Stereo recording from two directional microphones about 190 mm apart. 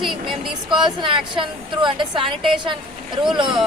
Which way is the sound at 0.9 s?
25° right (ahead or behind).